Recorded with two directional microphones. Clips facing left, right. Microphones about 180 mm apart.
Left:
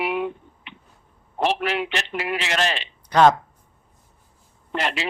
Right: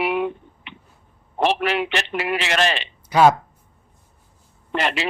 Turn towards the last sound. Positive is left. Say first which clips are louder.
# right 3 dB
turn(degrees=-70)  # may be behind; listen again after turning